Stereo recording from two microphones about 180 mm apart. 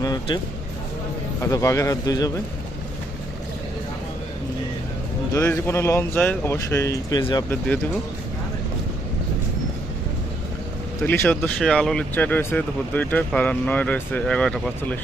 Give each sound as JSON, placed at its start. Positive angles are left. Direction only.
{"t": 0.0, "sound": "a sound", "side_deg": 20}
{"t": 1.4, "sound": "speech", "side_deg": 15}
{"t": 5.3, "sound": "speech", "side_deg": 15}
{"t": 11.0, "sound": "speech", "side_deg": 10}